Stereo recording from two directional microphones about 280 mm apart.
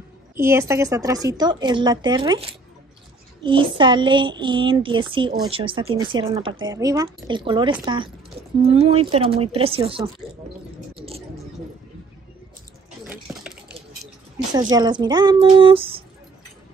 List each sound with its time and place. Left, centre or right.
0.4 s speech: centre
11.0 s a sound: right
13.0 s water: centre
14.5 s speech: centre